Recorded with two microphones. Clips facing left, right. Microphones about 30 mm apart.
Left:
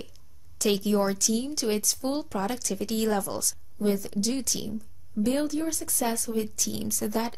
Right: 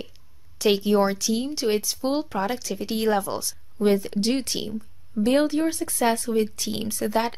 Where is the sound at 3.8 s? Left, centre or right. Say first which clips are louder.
Right 6 dB; right.